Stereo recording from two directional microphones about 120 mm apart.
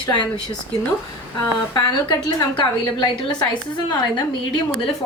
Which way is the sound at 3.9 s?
35° left (ahead or behind).